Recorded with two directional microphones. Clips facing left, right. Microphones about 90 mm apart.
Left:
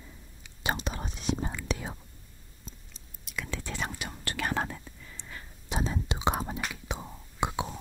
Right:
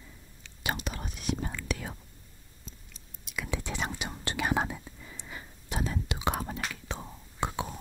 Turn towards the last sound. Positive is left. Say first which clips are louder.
# left 2 dB
turn(degrees=15)  # may be behind; listen again after turning